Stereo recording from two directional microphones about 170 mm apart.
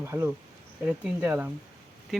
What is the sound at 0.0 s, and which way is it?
Speech, 15° right (ahead or behind).